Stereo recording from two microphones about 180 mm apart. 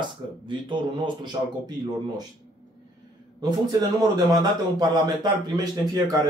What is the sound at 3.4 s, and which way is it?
A man's voice, 20° right (ahead or behind).